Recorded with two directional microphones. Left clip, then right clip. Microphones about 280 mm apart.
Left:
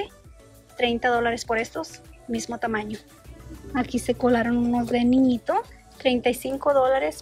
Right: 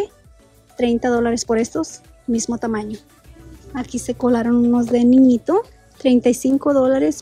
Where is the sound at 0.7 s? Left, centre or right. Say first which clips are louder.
Right 4 dB; centre.